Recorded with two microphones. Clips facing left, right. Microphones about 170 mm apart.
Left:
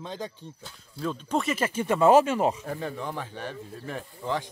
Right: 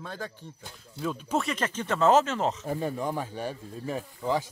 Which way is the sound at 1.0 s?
5° right (ahead or behind).